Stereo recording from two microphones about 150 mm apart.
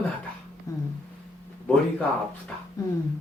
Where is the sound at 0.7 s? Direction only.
20° left (ahead or behind).